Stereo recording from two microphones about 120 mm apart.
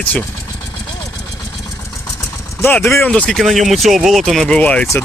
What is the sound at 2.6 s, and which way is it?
Speech, 15° left (ahead or behind).